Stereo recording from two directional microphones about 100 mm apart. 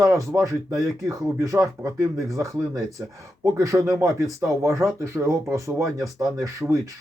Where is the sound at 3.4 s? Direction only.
35° right (ahead or behind).